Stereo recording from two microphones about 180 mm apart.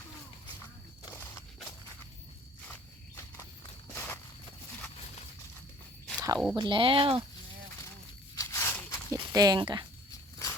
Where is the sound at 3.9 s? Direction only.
10° left (ahead or behind).